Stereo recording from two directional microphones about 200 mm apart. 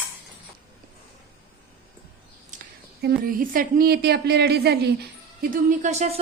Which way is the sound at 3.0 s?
45° right (ahead or behind).